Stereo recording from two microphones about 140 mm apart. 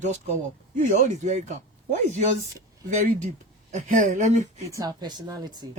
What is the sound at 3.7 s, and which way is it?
Speech, 65° right (ahead or behind).